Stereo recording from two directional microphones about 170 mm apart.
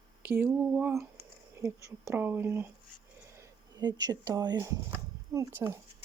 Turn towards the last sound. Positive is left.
turn(degrees=-15)  # may be behind; listen again after turning